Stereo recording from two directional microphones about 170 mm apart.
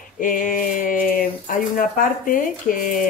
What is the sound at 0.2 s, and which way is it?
Speech, 55° left (ahead or behind).